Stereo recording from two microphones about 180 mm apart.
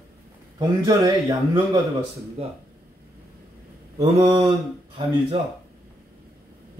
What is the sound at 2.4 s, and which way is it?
Speech, 35° right (ahead or behind).